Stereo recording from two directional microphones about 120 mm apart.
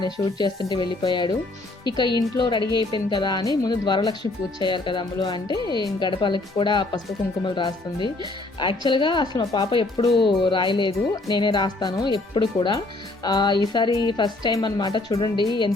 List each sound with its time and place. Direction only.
0.0 s speech: 35° left (ahead or behind)
10.2 s speech: 45° left (ahead or behind)